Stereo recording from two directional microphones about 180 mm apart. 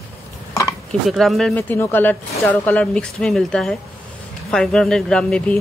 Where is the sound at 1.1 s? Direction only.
Centre (ahead or behind).